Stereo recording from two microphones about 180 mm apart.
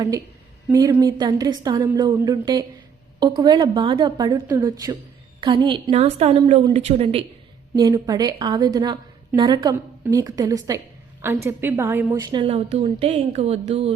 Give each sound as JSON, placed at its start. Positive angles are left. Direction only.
{"t": 0.7, "sound": "a woman's voice", "side_deg": -15}
{"t": 7.8, "sound": "a woman's voice", "side_deg": -20}